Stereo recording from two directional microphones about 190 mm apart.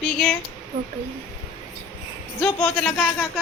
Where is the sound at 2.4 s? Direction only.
5° left (ahead or behind).